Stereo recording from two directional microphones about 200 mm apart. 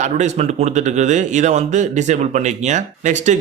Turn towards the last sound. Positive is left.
turn(degrees=-35)  # may be behind; listen again after turning